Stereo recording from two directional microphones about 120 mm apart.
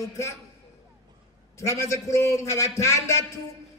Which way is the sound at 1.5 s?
25° left (ahead or behind).